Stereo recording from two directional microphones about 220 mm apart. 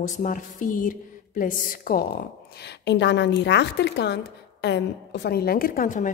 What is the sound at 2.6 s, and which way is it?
Speech, 50° left (ahead or behind).